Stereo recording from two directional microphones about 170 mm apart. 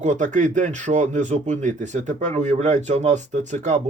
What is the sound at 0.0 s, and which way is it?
Speech, 45° right (ahead or behind).